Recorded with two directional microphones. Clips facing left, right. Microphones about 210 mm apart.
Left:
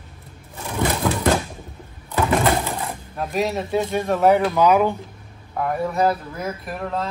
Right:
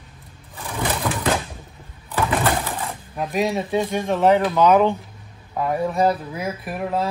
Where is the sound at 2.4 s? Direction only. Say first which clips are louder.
Left 2 dB; 15° left (ahead or behind).